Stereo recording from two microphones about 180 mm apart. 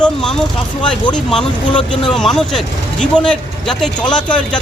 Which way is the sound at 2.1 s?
Centre (ahead or behind).